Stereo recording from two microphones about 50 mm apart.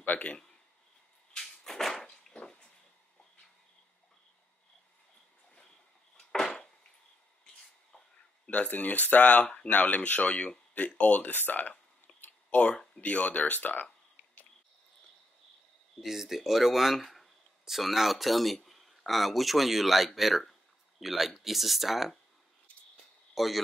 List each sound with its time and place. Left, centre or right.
0.0 s a man's voice: left
1.4 s a sound: centre
6.1 s a sound: centre
8.5 s speech: left
12.1 s whispering: centre
12.4 s a sound: left
13.0 s speech: left
16.0 s speech: centre
23.3 s speech: centre